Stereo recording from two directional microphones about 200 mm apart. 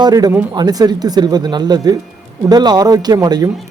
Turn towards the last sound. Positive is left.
turn(degrees=-20)  # may be behind; listen again after turning